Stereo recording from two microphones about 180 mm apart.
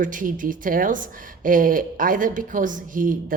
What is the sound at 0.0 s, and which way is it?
A woman's voice, 50° right (ahead or behind).